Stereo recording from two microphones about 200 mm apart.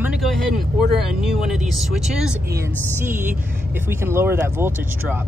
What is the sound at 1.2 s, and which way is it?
Speech, centre (ahead or behind).